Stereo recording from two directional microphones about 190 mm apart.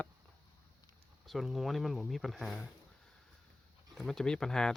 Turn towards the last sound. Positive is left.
turn(degrees=5)  # may be behind; listen again after turning